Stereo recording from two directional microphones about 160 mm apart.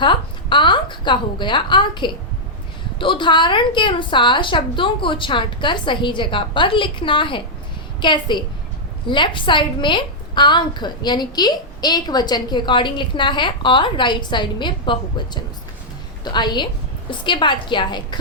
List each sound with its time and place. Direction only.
0.0 s a woman's voice: 30° left (ahead or behind)
16.2 s a woman's voice: 25° left (ahead or behind)